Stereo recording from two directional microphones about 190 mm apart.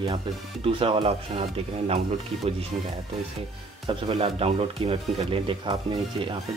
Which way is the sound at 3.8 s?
30° right (ahead or behind).